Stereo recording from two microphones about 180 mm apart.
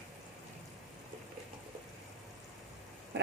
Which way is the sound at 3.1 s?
70° right (ahead or behind).